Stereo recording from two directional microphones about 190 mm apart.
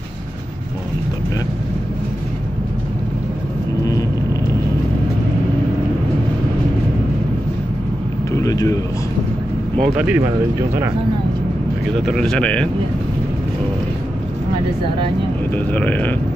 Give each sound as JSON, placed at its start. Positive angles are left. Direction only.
{"t": 8.3, "sound": "a sound", "side_deg": 15}
{"t": 9.8, "sound": "speech", "side_deg": -5}
{"t": 12.0, "sound": "speech", "side_deg": 0}
{"t": 15.5, "sound": "speech", "side_deg": 10}